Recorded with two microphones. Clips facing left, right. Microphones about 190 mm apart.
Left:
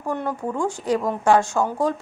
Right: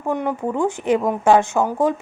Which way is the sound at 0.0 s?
15° right (ahead or behind).